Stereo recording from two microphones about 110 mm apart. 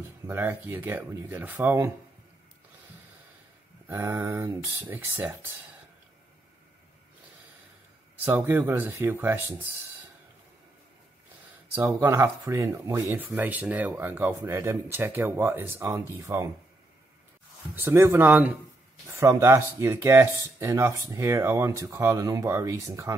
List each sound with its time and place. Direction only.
0.3 s speech: 20° right (ahead or behind)
3.8 s speech: 25° right (ahead or behind)
8.3 s speech: 20° right (ahead or behind)
11.7 s speech: 20° right (ahead or behind)
17.7 s speech: 20° right (ahead or behind)